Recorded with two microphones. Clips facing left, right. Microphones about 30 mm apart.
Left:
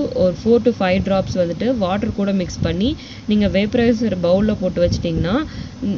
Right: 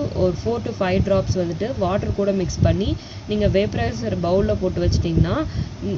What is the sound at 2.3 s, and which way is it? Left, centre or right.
Speech, left.